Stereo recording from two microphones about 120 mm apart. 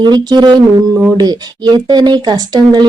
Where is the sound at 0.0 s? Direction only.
35° right (ahead or behind).